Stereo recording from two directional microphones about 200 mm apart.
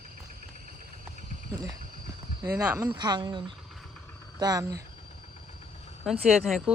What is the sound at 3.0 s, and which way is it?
Speech, 20° right (ahead or behind).